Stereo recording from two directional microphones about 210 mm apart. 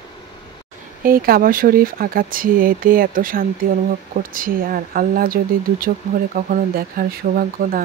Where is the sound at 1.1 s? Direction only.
45° right (ahead or behind).